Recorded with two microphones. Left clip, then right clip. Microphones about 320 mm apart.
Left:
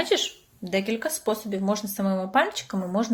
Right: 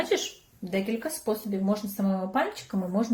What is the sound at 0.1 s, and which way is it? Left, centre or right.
Speech, centre.